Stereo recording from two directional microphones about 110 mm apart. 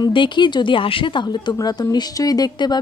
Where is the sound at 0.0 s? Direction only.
45° left (ahead or behind).